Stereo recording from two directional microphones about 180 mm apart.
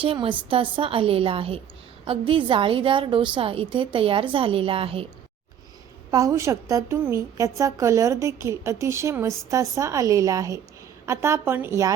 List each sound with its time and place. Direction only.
0.0 s a woman's voice: 30° right (ahead or behind)
6.1 s a woman's voice: 20° right (ahead or behind)